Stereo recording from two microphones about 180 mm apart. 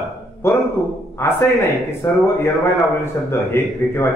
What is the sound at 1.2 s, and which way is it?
A man's voice, 15° left (ahead or behind).